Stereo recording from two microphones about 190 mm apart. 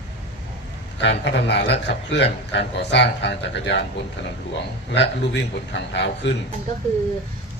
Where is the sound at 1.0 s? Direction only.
65° left (ahead or behind).